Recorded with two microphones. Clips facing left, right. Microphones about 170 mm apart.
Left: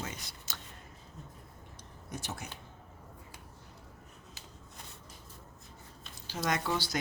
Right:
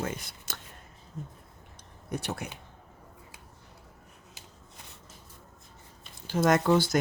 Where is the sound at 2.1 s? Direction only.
65° right (ahead or behind).